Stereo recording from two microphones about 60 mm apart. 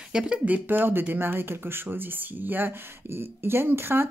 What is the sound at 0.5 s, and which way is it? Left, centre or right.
Speech, right.